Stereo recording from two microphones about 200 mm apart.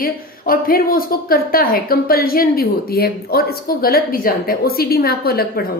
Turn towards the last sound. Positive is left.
turn(degrees=50)  # may be behind; listen again after turning